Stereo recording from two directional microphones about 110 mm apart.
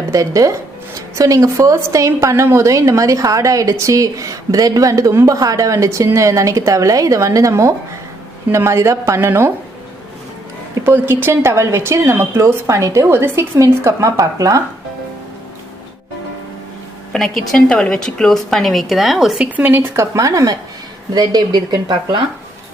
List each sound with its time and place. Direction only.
0.1 s speech: 30° right (ahead or behind)
10.8 s speech: 20° right (ahead or behind)
17.1 s a woman's voice: 5° left (ahead or behind); by 22.2 s 40° right (ahead or behind)